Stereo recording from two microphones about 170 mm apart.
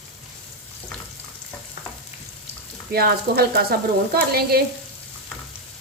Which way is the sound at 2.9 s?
65° right (ahead or behind).